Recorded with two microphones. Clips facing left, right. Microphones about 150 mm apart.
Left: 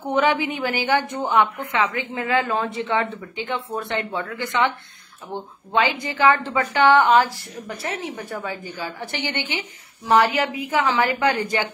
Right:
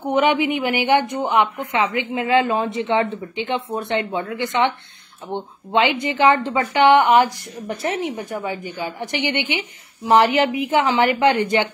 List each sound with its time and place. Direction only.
0.0 s a woman's voice: 20° right (ahead or behind)